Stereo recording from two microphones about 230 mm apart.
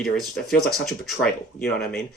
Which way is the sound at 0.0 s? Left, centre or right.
Centre.